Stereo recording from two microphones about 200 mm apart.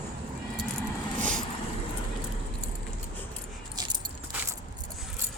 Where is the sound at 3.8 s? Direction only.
20° right (ahead or behind).